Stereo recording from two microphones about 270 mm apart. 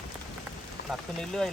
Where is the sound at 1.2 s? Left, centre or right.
Centre.